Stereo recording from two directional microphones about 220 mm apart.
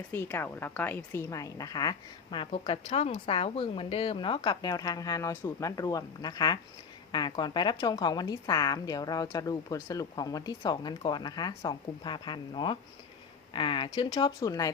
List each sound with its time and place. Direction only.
0.1 s a woman's voice: 10° left (ahead or behind)